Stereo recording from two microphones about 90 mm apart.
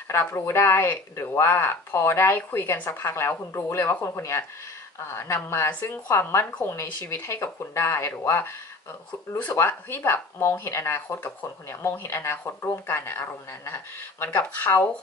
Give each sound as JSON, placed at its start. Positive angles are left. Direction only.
{"t": 0.1, "sound": "speech", "side_deg": 30}